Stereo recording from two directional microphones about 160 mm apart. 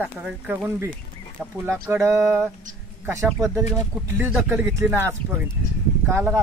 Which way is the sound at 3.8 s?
15° right (ahead or behind).